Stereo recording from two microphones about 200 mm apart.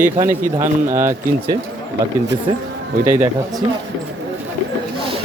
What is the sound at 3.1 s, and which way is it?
Speech, 10° right (ahead or behind).